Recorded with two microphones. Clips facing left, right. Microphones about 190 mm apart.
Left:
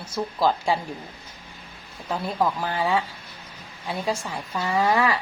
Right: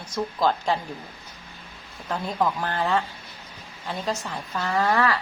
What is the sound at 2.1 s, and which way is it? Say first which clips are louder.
A woman's voice: left 1 dB; 10° left (ahead or behind).